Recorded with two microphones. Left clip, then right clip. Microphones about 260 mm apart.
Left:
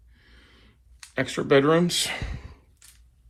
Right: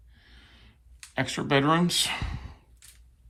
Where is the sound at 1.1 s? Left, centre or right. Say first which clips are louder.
Left 5 dB; centre.